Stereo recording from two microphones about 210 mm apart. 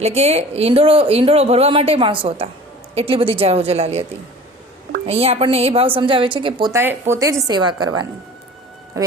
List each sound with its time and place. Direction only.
0.0 s speech: 30° right (ahead or behind)
5.0 s speech: 30° right (ahead or behind)